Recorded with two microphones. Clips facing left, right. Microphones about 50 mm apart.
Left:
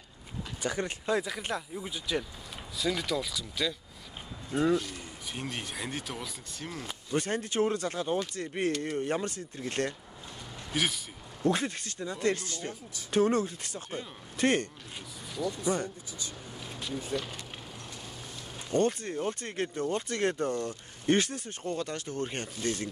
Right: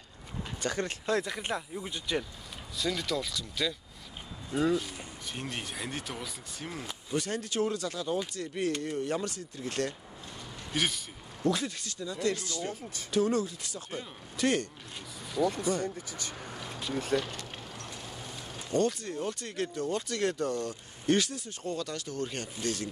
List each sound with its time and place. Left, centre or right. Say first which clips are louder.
0.6 s speech: even; centre
1.2 s speech: even; centre
7.2 s speech: left 2 dB; left
10.7 s speech: left 1 dB; centre
11.4 s speech: left 1 dB; left
16.1 s speech: right 1 dB; right
16.9 s speech: right 4 dB; right
17.2 s speech: right 3 dB; centre
18.7 s speech: left 1 dB; left